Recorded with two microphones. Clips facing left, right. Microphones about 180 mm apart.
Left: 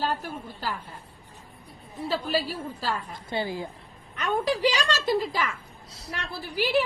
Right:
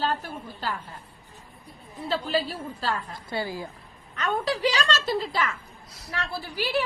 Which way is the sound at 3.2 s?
20° left (ahead or behind).